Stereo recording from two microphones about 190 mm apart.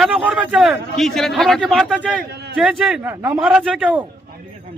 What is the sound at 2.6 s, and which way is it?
A man's voice, 5° right (ahead or behind).